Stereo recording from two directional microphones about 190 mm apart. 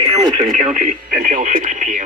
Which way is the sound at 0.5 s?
40° right (ahead or behind).